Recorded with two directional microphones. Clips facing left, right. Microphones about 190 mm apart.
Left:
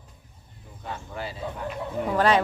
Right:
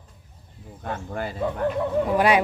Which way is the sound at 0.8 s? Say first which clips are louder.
Right 5 dB; 55° right (ahead or behind).